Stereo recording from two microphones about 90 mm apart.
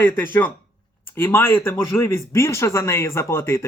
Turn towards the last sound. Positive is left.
turn(degrees=30)  # may be behind; listen again after turning